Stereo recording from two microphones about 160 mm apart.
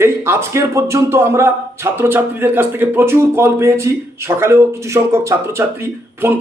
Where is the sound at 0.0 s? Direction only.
15° right (ahead or behind).